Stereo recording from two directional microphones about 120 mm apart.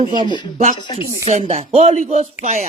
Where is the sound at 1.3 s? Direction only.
90° right; by 2.7 s 70° right (ahead or behind).